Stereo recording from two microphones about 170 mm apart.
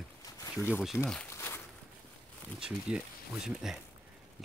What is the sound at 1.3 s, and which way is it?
Walk, 15° left (ahead or behind).